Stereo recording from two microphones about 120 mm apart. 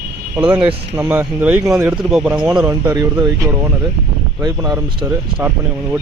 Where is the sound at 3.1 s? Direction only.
35° right (ahead or behind).